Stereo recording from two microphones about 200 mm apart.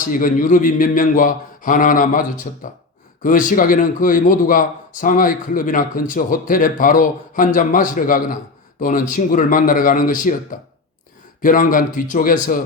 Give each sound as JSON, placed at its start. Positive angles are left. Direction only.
{"t": 0.0, "sound": "a man's voice", "side_deg": 45}